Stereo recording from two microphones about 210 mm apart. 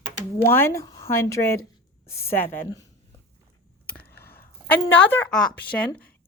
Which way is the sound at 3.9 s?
45° left (ahead or behind).